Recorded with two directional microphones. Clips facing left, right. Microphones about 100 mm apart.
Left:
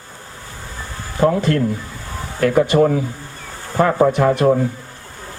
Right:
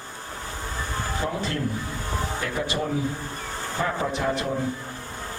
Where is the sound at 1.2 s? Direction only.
60° left (ahead or behind).